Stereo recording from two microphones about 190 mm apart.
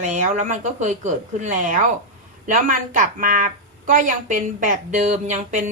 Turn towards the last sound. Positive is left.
turn(degrees=-40)  # may be behind; listen again after turning